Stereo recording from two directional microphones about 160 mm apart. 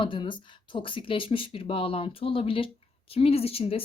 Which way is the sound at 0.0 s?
30° left (ahead or behind).